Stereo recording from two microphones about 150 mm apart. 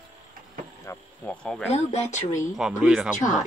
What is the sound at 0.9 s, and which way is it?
Speech, 20° left (ahead or behind).